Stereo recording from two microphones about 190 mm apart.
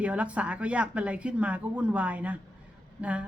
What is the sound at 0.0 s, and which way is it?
A woman's voice, 5° right (ahead or behind).